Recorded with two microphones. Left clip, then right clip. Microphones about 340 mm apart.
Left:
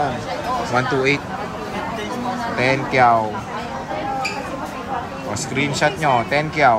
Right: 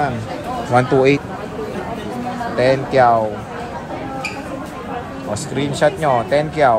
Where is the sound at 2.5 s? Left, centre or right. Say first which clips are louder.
Right 4 dB; centre.